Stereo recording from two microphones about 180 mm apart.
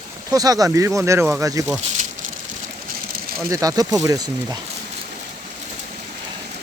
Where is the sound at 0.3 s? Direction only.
20° right (ahead or behind).